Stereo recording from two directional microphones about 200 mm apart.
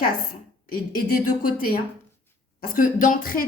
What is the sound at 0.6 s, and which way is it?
A woman's voice, 45° left (ahead or behind).